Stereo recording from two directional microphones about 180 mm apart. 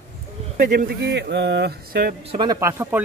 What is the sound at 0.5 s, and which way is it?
Speech, 55° right (ahead or behind).